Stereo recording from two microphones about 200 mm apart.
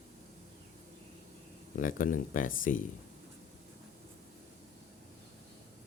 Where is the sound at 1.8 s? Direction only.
40° left (ahead or behind).